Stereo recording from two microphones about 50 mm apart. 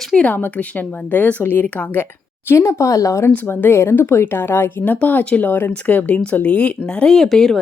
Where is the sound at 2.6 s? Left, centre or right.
Left.